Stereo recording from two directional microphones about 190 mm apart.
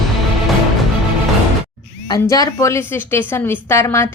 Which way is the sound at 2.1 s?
20° left (ahead or behind).